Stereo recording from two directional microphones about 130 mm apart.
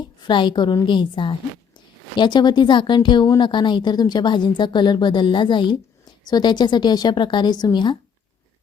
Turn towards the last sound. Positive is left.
turn(degrees=35)  # may be behind; listen again after turning